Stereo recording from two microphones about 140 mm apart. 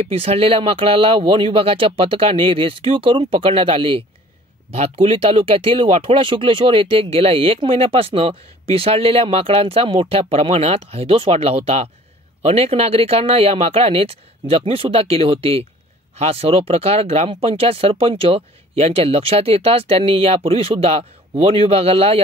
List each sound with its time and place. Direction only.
0.0 s speech: 45° right (ahead or behind)